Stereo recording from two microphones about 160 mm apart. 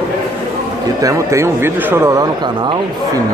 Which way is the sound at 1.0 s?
20° right (ahead or behind).